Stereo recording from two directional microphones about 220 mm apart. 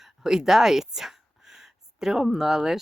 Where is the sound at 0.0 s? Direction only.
Centre (ahead or behind).